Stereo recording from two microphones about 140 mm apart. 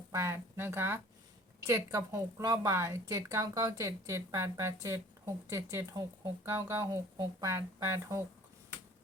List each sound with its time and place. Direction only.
0.1 s a woman's voice: 20° right (ahead or behind)